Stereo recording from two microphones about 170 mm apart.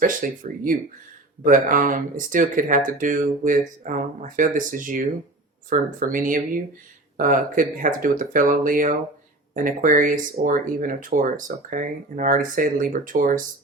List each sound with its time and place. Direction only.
0.0 s speech: 50° right (ahead or behind)